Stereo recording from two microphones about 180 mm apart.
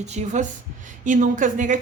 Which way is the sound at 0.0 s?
40° right (ahead or behind).